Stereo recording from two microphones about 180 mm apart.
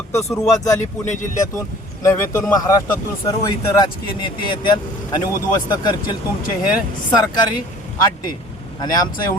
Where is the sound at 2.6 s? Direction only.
20° left (ahead or behind).